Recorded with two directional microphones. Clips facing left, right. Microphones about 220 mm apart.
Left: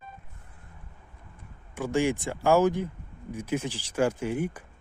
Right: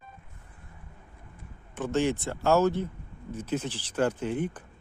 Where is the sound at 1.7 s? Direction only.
10° left (ahead or behind).